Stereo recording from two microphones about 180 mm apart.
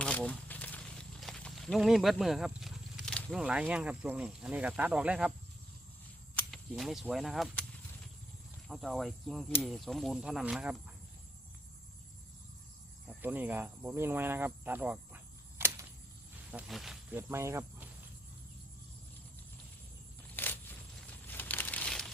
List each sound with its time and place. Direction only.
0.0 s snake: 5° left (ahead or behind)
6.3 s speech: centre (ahead or behind)
8.6 s speech: centre (ahead or behind)
13.1 s a sound: 10° right (ahead or behind)
16.5 s speech: 5° right (ahead or behind)
20.3 s a sound: 10° left (ahead or behind)
21.2 s crumpling: 10° left (ahead or behind)